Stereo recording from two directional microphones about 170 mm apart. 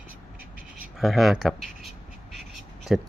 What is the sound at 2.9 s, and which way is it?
Speech, 5° right (ahead or behind).